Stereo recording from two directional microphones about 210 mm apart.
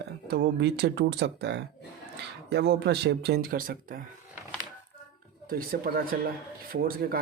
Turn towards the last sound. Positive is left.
turn(degrees=-45)  # may be behind; listen again after turning